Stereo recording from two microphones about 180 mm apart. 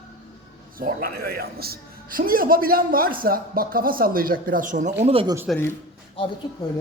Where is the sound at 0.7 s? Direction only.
55° right (ahead or behind).